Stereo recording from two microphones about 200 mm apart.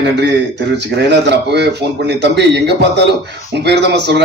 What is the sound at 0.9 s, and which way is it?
A man's voice, 60° right (ahead or behind).